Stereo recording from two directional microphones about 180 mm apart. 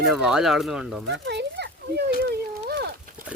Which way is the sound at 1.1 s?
70° right (ahead or behind).